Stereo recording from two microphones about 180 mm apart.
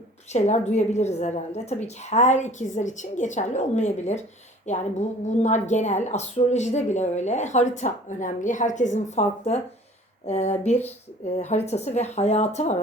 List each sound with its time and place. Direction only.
0.3 s a woman's voice: 40° left (ahead or behind)